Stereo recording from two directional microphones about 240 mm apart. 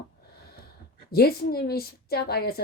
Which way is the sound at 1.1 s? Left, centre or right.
Left.